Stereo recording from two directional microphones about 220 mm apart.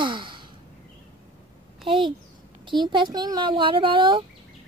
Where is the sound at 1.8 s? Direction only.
25° right (ahead or behind).